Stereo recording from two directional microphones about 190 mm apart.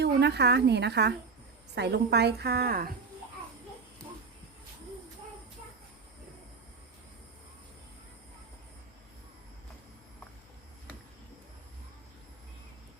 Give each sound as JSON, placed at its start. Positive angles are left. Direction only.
{"t": 0.0, "sound": "a woman's voice", "side_deg": -60}